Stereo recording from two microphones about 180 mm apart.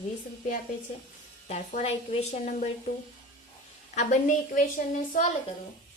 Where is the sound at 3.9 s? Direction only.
45° left (ahead or behind).